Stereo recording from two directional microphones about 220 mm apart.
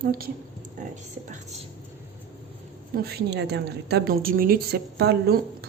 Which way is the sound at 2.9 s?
45° right (ahead or behind).